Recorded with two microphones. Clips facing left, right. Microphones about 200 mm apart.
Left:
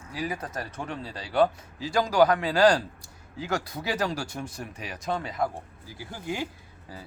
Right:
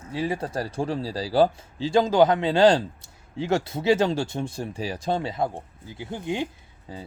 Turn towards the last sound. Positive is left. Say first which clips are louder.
# right 4 dB
turn(degrees=-25)  # may be behind; listen again after turning